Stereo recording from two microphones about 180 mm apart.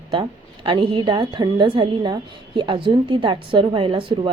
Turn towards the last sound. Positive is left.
turn(degrees=-25)  # may be behind; listen again after turning